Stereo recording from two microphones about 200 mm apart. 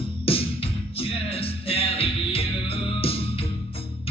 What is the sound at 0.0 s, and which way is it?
Music, 30° left (ahead or behind).